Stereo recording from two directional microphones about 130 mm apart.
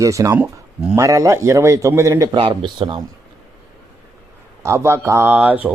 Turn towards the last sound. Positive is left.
turn(degrees=-10)  # may be behind; listen again after turning